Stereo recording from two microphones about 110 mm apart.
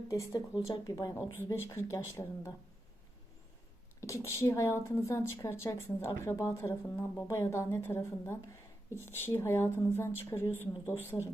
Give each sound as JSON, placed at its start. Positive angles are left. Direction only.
{"t": 0.1, "sound": "speech", "side_deg": 35}
{"t": 1.4, "sound": "a woman's voice", "side_deg": 25}
{"t": 4.0, "sound": "a woman's voice", "side_deg": 25}